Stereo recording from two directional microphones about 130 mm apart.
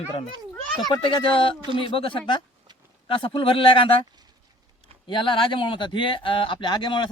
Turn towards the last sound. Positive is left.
turn(degrees=35)  # may be behind; listen again after turning